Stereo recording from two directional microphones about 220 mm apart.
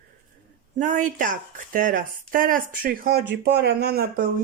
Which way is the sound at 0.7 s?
35° right (ahead or behind).